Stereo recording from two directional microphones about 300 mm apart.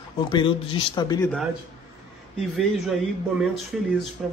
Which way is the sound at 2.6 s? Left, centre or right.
Centre.